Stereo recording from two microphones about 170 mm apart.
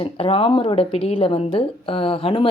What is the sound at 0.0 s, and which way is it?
Speech, 35° left (ahead or behind).